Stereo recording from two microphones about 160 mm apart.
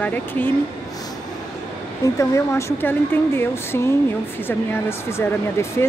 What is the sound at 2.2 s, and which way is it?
Speech, 15° left (ahead or behind).